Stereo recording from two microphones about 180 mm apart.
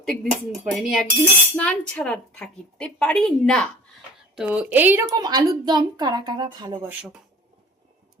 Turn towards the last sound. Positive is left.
turn(degrees=-25)  # may be behind; listen again after turning